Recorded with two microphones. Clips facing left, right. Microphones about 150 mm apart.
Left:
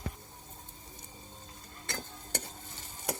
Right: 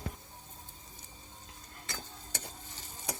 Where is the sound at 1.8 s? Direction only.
60° left (ahead or behind).